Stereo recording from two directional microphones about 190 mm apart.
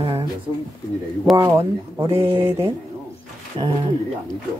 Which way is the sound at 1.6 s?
20° right (ahead or behind).